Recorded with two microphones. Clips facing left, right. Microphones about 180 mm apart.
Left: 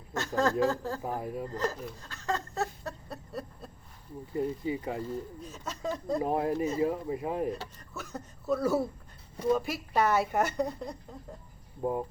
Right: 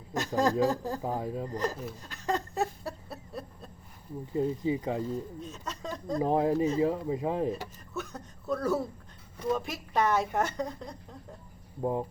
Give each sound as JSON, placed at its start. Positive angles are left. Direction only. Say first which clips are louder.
{"t": 0.1, "sound": "speech", "louder": "right 1 dB", "side_deg": -15}
{"t": 2.0, "sound": "a sound", "louder": "right 2 dB", "side_deg": -15}
{"t": 3.1, "sound": "a sound", "louder": "left 1 dB", "side_deg": 0}
{"t": 4.4, "sound": "speech", "louder": "right 3 dB", "side_deg": -20}
{"t": 5.4, "sound": "a woman's voice", "louder": "left 1 dB", "side_deg": 0}
{"t": 6.2, "sound": "speech", "louder": "right 5 dB", "side_deg": -25}
{"t": 7.5, "sound": "a woman's voice", "louder": "right 3 dB", "side_deg": 0}
{"t": 11.8, "sound": "speech", "louder": "right 1 dB", "side_deg": -20}